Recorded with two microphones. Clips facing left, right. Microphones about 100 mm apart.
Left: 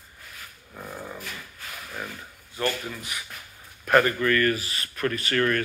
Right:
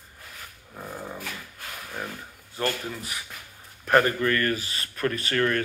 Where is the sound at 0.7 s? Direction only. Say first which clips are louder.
Right 1 dB; 5° right (ahead or behind).